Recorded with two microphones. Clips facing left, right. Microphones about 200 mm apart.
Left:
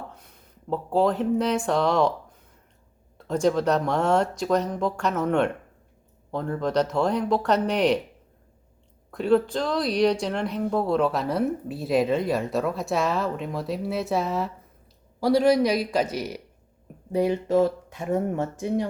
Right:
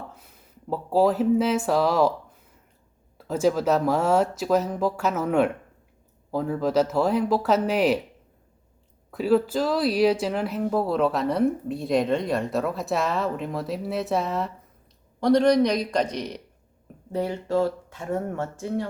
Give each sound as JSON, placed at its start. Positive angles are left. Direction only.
{"t": 0.1, "sound": "speech", "side_deg": -5}
{"t": 3.2, "sound": "a woman's voice", "side_deg": -5}
{"t": 9.0, "sound": "a woman's voice", "side_deg": -5}